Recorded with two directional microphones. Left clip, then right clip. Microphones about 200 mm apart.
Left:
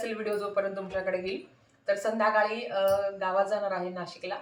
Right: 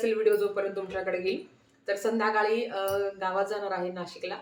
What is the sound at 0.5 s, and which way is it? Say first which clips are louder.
Speech: left 1 dB; 15° right (ahead or behind).